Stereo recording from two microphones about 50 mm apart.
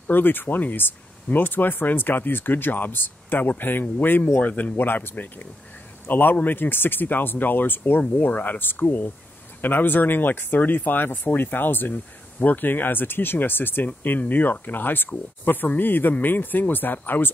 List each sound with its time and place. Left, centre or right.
0.1 s speech: left